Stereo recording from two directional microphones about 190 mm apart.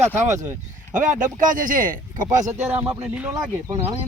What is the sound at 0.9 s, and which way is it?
Speech, 40° right (ahead or behind).